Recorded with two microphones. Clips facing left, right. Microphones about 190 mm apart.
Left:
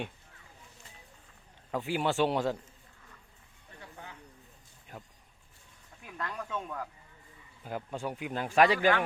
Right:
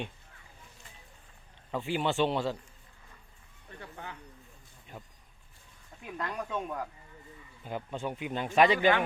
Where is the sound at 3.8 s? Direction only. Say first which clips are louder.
Right 4 dB; 70° right (ahead or behind).